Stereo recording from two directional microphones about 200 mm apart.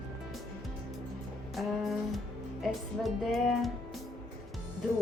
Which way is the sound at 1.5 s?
Centre (ahead or behind).